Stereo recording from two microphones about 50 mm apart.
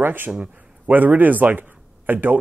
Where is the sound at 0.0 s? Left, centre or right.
Right.